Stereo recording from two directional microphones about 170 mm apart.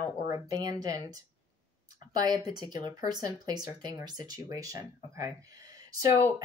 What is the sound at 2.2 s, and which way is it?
Speech, 25° right (ahead or behind).